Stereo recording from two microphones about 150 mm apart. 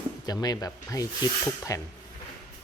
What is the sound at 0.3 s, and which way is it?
Speech, 25° left (ahead or behind).